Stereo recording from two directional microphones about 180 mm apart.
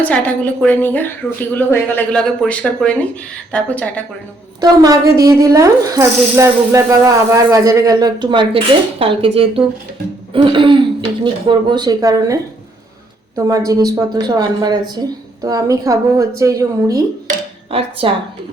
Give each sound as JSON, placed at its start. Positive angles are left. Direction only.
{"t": 0.0, "sound": "a woman's voice", "side_deg": 10}
{"t": 4.6, "sound": "speech", "side_deg": -20}
{"t": 17.2, "sound": "music", "side_deg": -35}